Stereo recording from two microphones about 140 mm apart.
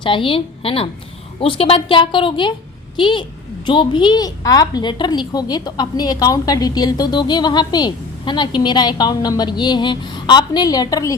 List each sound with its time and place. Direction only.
0.0 s a woman's voice: 40° left (ahead or behind)